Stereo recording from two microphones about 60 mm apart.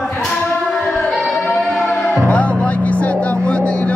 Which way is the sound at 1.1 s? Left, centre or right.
Centre.